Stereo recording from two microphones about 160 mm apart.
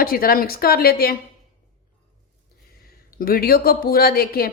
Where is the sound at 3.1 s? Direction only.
65° left (ahead or behind).